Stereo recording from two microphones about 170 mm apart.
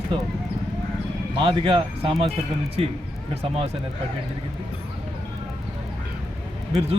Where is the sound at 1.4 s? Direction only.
30° right (ahead or behind).